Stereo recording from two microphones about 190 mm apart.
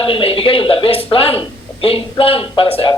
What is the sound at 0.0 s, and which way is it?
A man's voice, 30° left (ahead or behind).